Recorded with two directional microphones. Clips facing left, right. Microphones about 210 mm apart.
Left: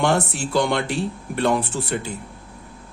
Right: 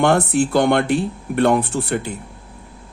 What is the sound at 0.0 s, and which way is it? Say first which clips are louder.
Speech: right 5 dB; 55° right (ahead or behind).